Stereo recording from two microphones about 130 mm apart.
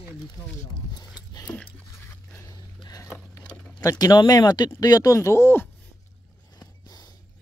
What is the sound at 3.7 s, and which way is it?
Speech, 30° left (ahead or behind).